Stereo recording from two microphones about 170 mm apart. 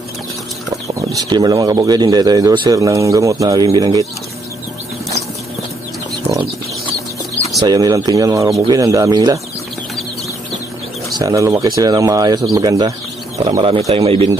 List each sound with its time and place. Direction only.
0.7 s speech: 20° right (ahead or behind)
7.6 s speech: 25° right (ahead or behind)
11.1 s speech: 20° right (ahead or behind)